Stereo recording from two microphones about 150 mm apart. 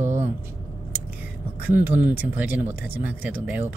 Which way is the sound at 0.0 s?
50° right (ahead or behind).